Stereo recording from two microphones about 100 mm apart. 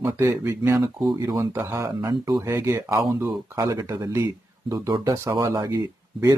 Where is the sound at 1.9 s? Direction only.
45° right (ahead or behind).